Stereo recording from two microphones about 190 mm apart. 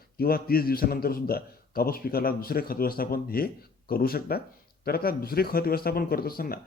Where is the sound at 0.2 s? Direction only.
50° left (ahead or behind).